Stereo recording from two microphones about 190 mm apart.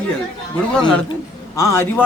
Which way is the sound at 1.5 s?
15° left (ahead or behind).